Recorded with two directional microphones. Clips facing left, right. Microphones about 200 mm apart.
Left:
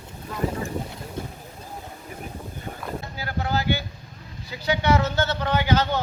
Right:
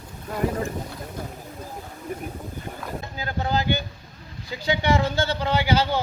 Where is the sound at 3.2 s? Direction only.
20° right (ahead or behind).